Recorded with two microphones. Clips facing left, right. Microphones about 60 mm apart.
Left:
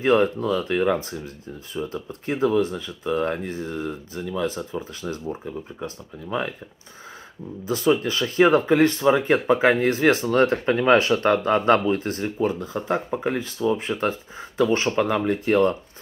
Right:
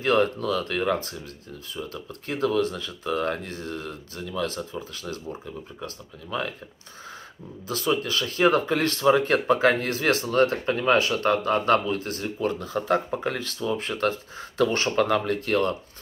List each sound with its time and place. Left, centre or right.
0.0 s speech: left
7.6 s speech: left
12.4 s speech: centre
15.4 s speech: left